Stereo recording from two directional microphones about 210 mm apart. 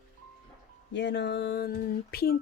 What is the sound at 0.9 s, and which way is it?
Speech, 55° left (ahead or behind).